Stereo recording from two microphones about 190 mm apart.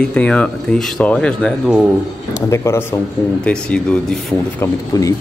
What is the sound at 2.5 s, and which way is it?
Speech, 15° left (ahead or behind).